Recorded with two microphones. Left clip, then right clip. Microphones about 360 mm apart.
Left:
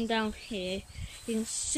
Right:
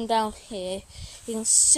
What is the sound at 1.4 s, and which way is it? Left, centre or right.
Speech, centre.